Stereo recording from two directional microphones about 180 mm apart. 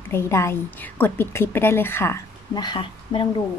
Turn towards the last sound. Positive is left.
turn(degrees=30)  # may be behind; listen again after turning